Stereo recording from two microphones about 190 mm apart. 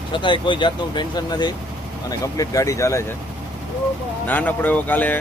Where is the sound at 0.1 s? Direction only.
25° left (ahead or behind).